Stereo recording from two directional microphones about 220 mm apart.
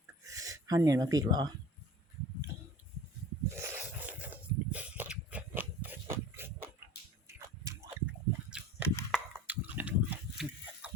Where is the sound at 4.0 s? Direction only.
5° right (ahead or behind).